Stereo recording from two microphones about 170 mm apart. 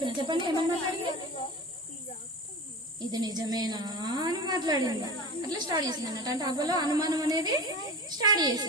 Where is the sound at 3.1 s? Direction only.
25° right (ahead or behind).